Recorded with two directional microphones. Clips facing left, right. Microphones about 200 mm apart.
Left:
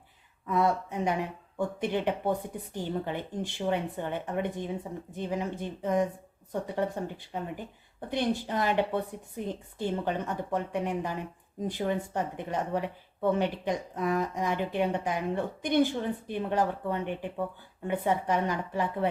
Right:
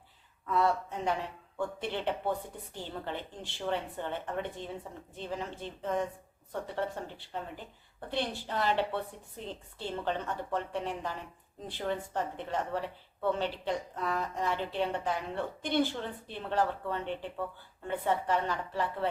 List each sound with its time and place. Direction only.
0.4 s speech: 15° left (ahead or behind)
7.3 s speech: 15° left (ahead or behind)